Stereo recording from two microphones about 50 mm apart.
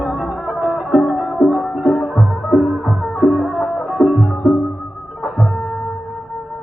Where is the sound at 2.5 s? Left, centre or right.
Right.